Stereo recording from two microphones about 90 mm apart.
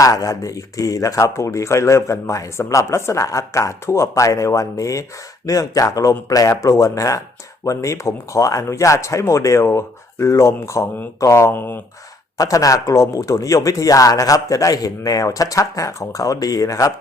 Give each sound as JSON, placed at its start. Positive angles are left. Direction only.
{"t": 0.0, "sound": "speech", "side_deg": 40}
{"t": 12.4, "sound": "speech", "side_deg": 40}